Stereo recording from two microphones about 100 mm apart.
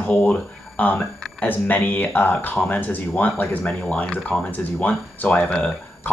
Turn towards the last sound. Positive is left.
turn(degrees=10)  # may be behind; listen again after turning